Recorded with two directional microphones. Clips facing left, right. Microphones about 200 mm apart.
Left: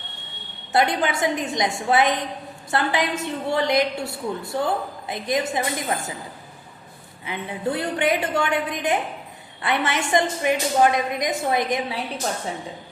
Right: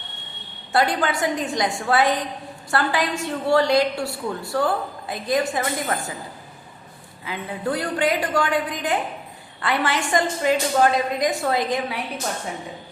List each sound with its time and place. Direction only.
0.7 s a woman's voice: 20° left (ahead or behind)
7.3 s a woman's voice: 25° left (ahead or behind)